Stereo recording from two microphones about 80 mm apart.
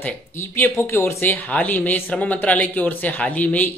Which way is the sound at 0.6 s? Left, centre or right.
Left.